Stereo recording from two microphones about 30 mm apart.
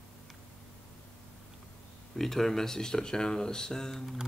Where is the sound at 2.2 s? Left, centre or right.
Centre.